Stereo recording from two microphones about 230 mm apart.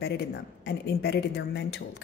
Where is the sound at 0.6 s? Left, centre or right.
Left.